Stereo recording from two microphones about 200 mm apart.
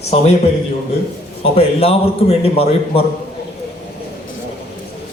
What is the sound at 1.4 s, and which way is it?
A man's voice, 30° left (ahead or behind).